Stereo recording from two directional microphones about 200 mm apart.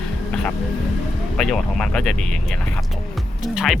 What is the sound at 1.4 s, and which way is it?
Speech, 5° left (ahead or behind).